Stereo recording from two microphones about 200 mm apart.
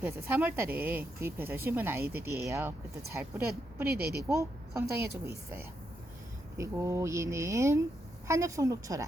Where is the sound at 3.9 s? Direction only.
50° right (ahead or behind).